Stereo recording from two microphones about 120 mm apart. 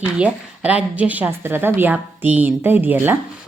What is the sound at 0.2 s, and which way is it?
A woman's voice, 10° right (ahead or behind).